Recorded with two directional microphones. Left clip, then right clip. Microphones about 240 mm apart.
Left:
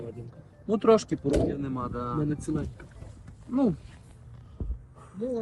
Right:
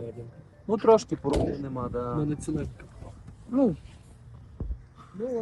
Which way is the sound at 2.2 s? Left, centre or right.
Centre.